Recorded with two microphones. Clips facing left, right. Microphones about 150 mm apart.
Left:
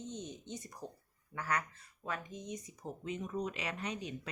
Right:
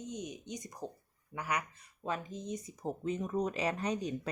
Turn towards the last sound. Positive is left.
turn(degrees=-40)  # may be behind; listen again after turning